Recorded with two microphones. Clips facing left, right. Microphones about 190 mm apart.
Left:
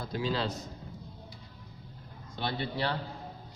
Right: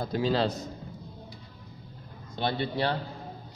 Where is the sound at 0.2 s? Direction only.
35° right (ahead or behind).